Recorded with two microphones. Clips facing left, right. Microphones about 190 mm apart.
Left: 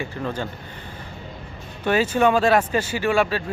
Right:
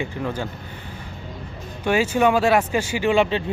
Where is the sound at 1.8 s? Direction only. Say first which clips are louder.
Even; 10° right (ahead or behind).